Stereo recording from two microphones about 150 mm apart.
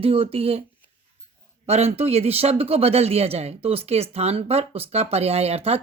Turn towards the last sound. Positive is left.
turn(degrees=-45)  # may be behind; listen again after turning